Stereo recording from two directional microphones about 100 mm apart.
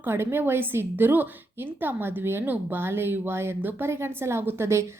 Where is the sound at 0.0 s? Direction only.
25° right (ahead or behind).